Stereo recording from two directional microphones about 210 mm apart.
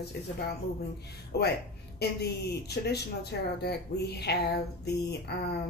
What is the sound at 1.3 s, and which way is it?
Speech, 50° left (ahead or behind).